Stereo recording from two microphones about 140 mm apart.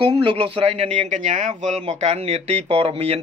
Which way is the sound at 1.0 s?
60° right (ahead or behind).